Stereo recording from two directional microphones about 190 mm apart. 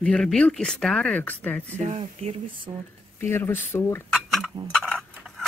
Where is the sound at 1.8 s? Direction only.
35° right (ahead or behind).